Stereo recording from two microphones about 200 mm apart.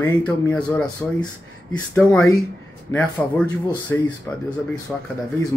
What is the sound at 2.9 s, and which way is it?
Speech, 15° left (ahead or behind).